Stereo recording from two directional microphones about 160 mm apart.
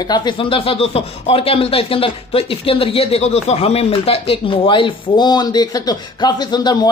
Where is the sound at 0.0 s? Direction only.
25° left (ahead or behind).